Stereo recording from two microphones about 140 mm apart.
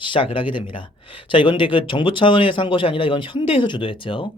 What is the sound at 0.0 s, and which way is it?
A man's voice, 35° left (ahead or behind).